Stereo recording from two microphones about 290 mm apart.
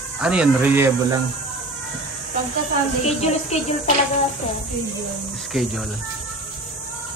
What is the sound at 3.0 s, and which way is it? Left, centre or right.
Speech, left.